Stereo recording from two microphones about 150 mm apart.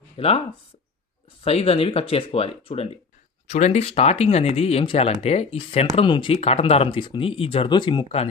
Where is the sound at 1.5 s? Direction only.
40° left (ahead or behind).